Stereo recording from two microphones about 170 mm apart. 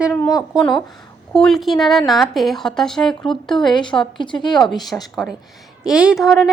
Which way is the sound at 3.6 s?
25° left (ahead or behind).